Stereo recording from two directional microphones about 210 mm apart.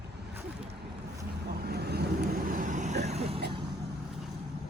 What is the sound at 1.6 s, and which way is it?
Vehicle, 50° right (ahead or behind).